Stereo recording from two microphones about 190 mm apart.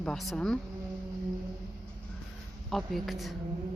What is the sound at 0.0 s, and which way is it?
Speech, centre (ahead or behind).